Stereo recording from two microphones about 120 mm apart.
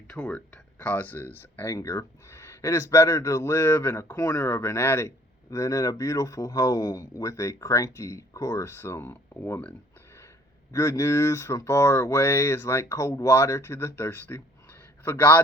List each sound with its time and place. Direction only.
0.1 s speech: 10° left (ahead or behind)
10.7 s speech: 25° left (ahead or behind)